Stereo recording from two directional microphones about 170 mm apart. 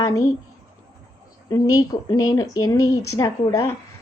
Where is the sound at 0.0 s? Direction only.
20° left (ahead or behind).